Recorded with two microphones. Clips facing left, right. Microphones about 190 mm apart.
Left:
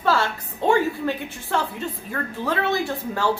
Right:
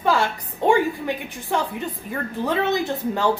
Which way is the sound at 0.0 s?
15° right (ahead or behind).